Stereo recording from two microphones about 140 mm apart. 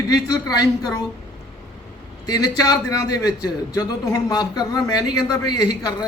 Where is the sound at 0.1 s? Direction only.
30° left (ahead or behind).